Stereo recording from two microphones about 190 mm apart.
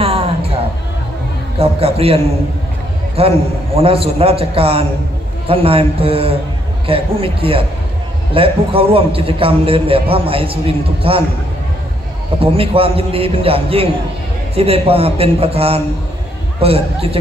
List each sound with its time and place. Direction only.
0.0 s a sound: 30° right (ahead or behind)
1.6 s a man's voice: 30° right (ahead or behind)
3.2 s a man's voice: 30° right (ahead or behind)
12.4 s a man's voice: 30° right (ahead or behind)